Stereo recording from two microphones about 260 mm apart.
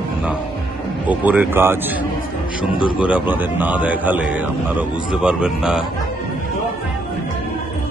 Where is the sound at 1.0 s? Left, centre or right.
Centre.